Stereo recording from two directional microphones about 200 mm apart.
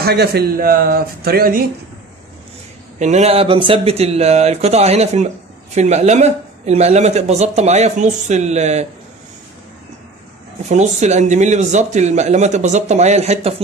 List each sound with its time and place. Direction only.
0.0 s speech: 55° right (ahead or behind)
3.0 s speech: 35° right (ahead or behind)
10.7 s speech: 35° right (ahead or behind)